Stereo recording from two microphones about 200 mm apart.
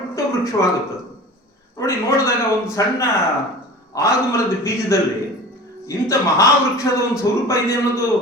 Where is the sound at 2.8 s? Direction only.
15° left (ahead or behind).